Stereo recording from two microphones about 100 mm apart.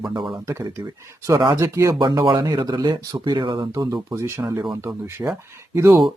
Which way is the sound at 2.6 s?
45° right (ahead or behind).